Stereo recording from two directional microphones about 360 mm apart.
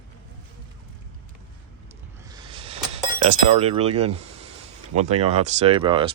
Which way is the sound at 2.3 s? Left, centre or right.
Centre.